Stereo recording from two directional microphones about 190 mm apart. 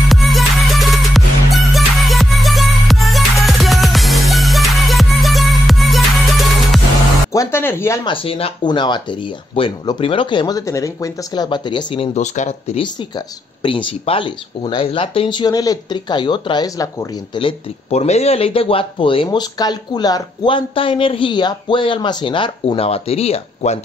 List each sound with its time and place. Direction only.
0.1 s music: centre (ahead or behind)
7.3 s speech: 15° left (ahead or behind)
8.1 s speech: 30° left (ahead or behind)
13.6 s speech: 25° left (ahead or behind)
17.4 s speech: 30° left (ahead or behind)